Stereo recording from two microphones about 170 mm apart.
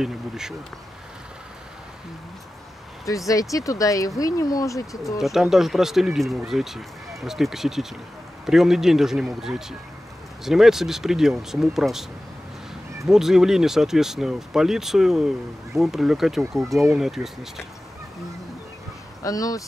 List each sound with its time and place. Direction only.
0.0 s speech: 5° right (ahead or behind)
3.1 s speech: 20° left (ahead or behind)
5.2 s speech: centre (ahead or behind)
19.2 s speech: 20° left (ahead or behind)